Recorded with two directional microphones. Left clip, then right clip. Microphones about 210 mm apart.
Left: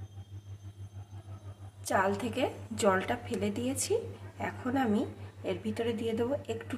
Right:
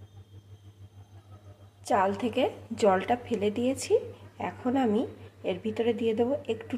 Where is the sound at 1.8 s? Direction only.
20° right (ahead or behind).